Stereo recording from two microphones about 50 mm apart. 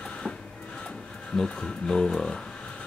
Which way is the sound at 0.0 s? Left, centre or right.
Left.